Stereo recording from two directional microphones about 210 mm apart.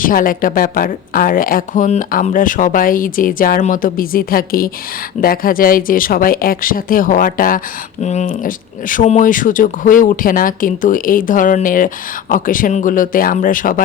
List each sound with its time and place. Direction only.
0.0 s a woman's voice: 40° left (ahead or behind)